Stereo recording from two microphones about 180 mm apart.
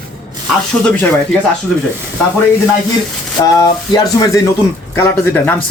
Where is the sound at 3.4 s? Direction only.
20° left (ahead or behind).